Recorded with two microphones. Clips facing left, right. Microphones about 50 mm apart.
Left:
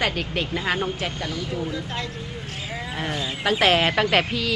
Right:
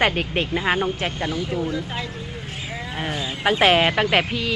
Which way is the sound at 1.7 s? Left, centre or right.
Centre.